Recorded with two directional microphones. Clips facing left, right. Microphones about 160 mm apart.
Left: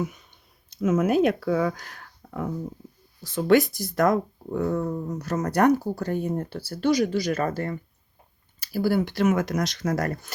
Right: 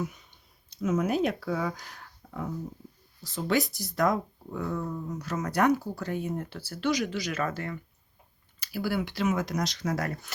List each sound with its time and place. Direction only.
0.8 s speech: 55° left (ahead or behind)